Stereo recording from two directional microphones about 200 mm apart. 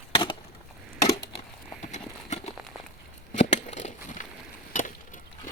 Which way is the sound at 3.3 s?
35° left (ahead or behind).